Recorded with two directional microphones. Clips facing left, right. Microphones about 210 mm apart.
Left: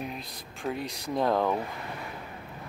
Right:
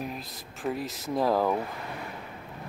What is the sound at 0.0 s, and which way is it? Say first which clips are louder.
Speech: right 1 dB; centre (ahead or behind).